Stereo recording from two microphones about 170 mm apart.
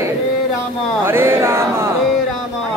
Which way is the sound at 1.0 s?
15° right (ahead or behind).